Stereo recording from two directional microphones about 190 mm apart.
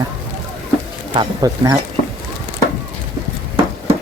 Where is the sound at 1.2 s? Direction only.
20° right (ahead or behind).